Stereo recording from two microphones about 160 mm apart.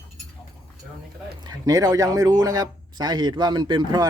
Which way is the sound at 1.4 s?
20° right (ahead or behind).